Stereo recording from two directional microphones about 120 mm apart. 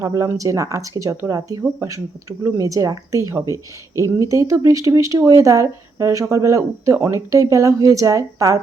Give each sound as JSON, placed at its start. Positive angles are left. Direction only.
{"t": 0.0, "sound": "speech", "side_deg": -25}